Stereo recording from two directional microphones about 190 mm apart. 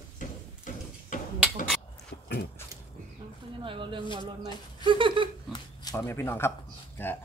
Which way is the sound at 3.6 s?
30° right (ahead or behind).